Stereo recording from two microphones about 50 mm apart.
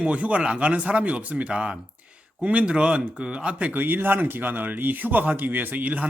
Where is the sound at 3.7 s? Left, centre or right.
Right.